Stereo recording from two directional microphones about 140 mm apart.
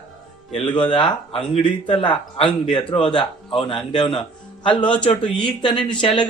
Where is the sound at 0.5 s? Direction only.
35° left (ahead or behind).